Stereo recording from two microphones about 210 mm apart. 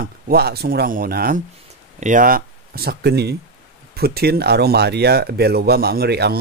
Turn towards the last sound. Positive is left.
turn(degrees=-50)  # may be behind; listen again after turning